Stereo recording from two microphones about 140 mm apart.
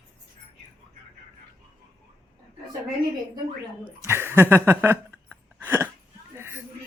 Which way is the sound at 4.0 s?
20° right (ahead or behind).